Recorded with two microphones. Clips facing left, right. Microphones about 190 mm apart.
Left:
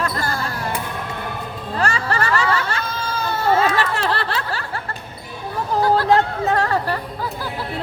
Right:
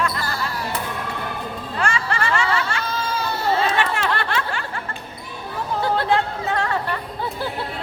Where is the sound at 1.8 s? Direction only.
40° left (ahead or behind).